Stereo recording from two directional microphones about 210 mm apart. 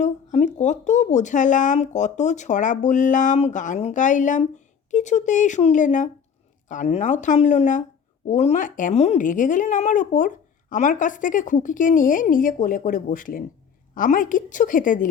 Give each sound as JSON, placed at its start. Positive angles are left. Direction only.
{"t": 0.0, "sound": "speech", "side_deg": 35}